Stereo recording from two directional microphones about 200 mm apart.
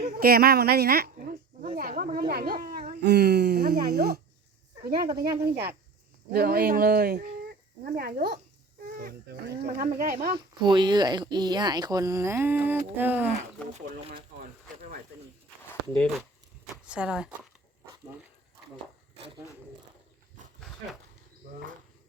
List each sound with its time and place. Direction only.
0.0 s a sound: 50° right (ahead or behind)
5.2 s speech: 15° right (ahead or behind)
6.3 s speech: 50° right (ahead or behind)
8.9 s a sound: 50° right (ahead or behind)
9.7 s speech: 45° right (ahead or behind)
10.3 s speech: 25° right (ahead or behind)
13.7 s speech: 35° right (ahead or behind)
15.9 s speech: 5° left (ahead or behind)
19.1 s a sound: 25° right (ahead or behind)